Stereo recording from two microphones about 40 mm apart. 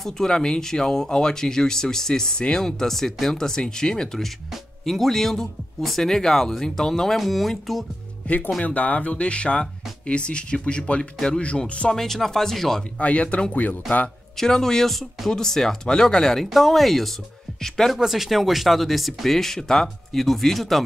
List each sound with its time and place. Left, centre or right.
0.0 s speech: centre
8.3 s speech: left
11.9 s speech: centre
13.0 s speech: left
14.3 s speech: centre
17.9 s speech: centre